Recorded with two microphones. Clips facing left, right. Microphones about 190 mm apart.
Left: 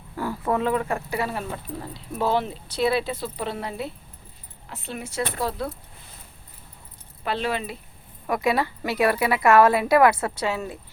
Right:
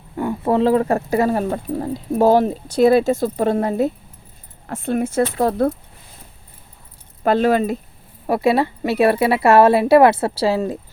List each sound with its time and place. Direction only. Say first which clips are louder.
0.2 s speech: right 7 dB; 25° right (ahead or behind); by 5.7 s 50° right (ahead or behind)
7.3 s speech: right 11 dB; 45° right (ahead or behind)
8.3 s speech: right 6 dB; 30° right (ahead or behind)